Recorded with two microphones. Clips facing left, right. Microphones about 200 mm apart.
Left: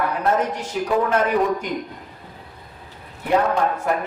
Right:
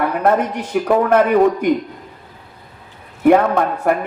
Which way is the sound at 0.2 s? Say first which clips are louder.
Right 5 dB; 60° right (ahead or behind).